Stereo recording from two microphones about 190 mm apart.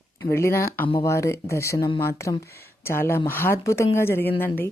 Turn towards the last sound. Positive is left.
turn(degrees=10)  # may be behind; listen again after turning